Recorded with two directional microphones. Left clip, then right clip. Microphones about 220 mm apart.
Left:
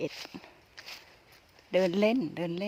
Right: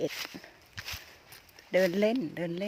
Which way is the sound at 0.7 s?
45° right (ahead or behind).